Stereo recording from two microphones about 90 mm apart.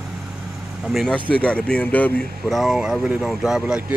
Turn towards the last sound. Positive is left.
turn(degrees=-5)  # may be behind; listen again after turning